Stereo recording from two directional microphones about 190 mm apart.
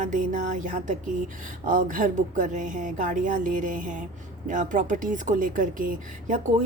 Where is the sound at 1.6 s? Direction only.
45° right (ahead or behind).